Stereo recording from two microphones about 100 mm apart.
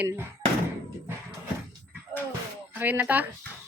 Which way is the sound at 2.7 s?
15° right (ahead or behind).